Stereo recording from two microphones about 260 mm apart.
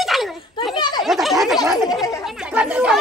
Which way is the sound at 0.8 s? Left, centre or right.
Centre.